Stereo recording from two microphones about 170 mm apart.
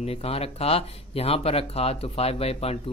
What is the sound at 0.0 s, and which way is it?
Speech, 35° left (ahead or behind).